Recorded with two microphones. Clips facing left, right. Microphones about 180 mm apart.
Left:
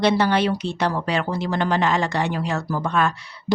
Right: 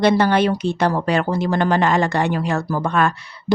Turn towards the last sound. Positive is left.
turn(degrees=-55)  # may be behind; listen again after turning